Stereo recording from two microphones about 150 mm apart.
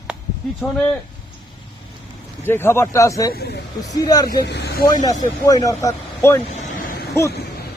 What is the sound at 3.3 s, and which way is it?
Speech, 90° left.